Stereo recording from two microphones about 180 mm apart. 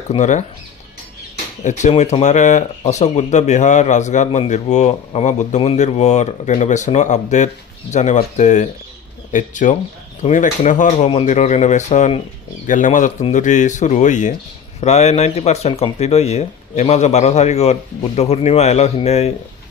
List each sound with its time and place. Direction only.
0.1 s speech: 40° left (ahead or behind)
1.6 s speech: 40° left (ahead or behind)